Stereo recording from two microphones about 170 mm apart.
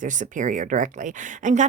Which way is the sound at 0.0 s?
50° right (ahead or behind).